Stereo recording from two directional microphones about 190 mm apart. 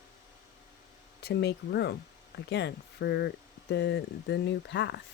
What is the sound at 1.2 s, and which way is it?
Speech, 60° left (ahead or behind).